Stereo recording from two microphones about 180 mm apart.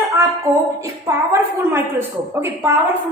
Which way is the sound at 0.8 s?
15° right (ahead or behind).